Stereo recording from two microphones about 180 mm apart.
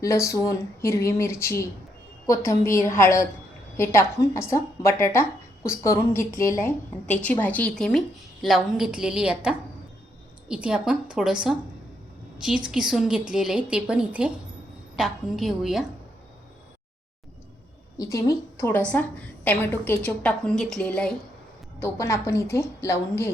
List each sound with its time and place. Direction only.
0.0 s a woman's voice: 15° left (ahead or behind); by 15.8 s centre (ahead or behind)
17.9 s a woman's voice: 15° left (ahead or behind)